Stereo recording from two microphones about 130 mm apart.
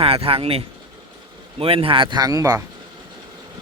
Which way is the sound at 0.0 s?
45° right (ahead or behind).